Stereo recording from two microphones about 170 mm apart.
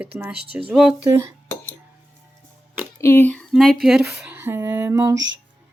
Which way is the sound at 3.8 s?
5° right (ahead or behind).